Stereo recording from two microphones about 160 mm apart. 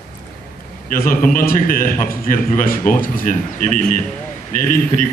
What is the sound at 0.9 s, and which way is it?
A man's voice, 60° left (ahead or behind).